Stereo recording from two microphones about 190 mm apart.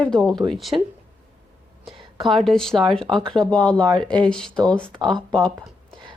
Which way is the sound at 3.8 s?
20° right (ahead or behind).